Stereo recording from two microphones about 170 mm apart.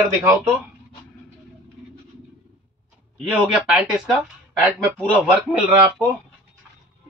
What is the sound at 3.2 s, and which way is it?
Speech, 5° right (ahead or behind).